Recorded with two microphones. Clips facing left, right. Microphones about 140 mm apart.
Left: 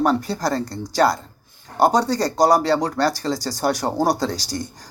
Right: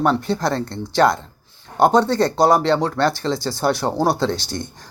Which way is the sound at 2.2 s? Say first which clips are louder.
Right 1 dB; 40° left (ahead or behind).